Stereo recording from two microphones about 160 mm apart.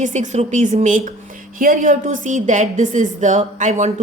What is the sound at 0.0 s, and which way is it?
A woman's voice, 50° right (ahead or behind).